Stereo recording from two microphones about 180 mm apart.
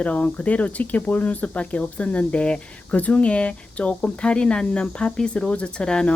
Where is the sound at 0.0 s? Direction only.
10° left (ahead or behind).